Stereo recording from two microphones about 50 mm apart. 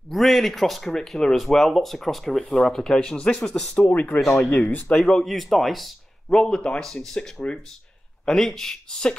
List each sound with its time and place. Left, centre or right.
0.1 s speech: centre
3.9 s speech: left
4.6 s speech: left
4.9 s speech: centre